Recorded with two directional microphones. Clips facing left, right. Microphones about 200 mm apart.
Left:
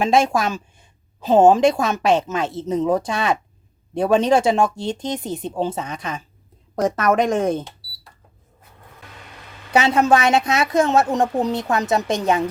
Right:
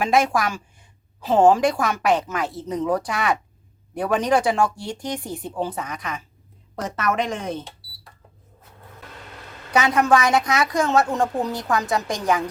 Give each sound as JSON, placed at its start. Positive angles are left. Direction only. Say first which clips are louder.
{"t": 0.0, "sound": "a woman's voice", "louder": "left 2 dB", "side_deg": 25}
{"t": 6.8, "sound": "speech", "louder": "left 6 dB", "side_deg": 45}
{"t": 9.7, "sound": "a woman's voice", "louder": "left 2 dB", "side_deg": 25}